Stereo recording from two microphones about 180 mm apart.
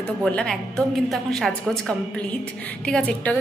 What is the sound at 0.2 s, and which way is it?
A woman's voice, 5° left (ahead or behind).